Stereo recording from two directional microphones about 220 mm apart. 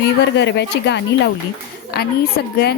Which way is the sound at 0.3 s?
50° left (ahead or behind).